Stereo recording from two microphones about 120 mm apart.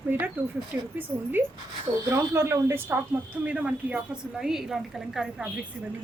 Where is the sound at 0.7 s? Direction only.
15° right (ahead or behind).